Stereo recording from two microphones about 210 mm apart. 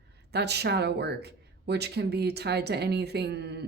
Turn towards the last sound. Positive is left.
turn(degrees=-50)  # may be behind; listen again after turning